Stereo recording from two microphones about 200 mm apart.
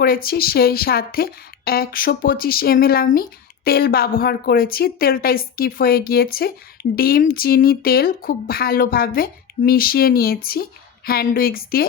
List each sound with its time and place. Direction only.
0.0 s a woman's voice: 50° left (ahead or behind)